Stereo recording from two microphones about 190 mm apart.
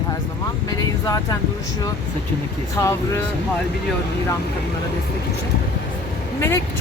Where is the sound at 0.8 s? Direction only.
20° left (ahead or behind).